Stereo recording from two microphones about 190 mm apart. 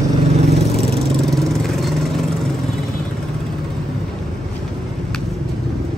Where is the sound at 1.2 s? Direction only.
Centre (ahead or behind).